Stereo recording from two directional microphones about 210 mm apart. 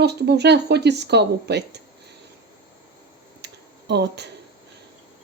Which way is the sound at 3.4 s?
55° right (ahead or behind).